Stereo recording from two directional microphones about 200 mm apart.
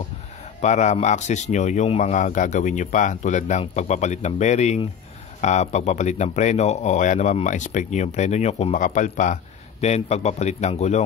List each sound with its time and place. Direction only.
0.6 s speech: 35° left (ahead or behind)